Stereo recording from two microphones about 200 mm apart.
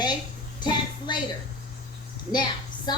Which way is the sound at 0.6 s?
20° left (ahead or behind).